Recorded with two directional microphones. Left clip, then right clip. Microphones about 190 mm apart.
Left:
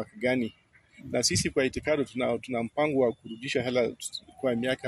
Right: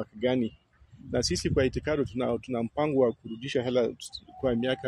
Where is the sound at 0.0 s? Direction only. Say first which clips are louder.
Even; 50° right (ahead or behind).